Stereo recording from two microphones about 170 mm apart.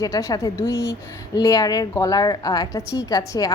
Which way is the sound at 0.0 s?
20° left (ahead or behind).